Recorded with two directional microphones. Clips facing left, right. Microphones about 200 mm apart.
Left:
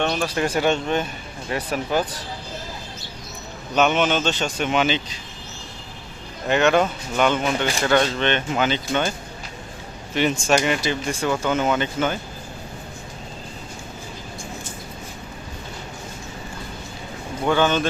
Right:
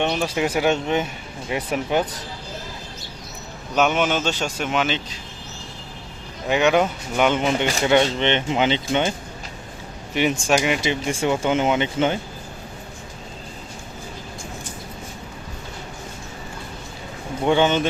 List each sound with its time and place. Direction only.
0.0 s speech: 15° right (ahead or behind)
3.8 s speech: 5° right (ahead or behind)
6.5 s speech: 10° right (ahead or behind)
10.2 s speech: 10° right (ahead or behind)
10.8 s speech: 25° right (ahead or behind)
17.4 s speech: 20° right (ahead or behind)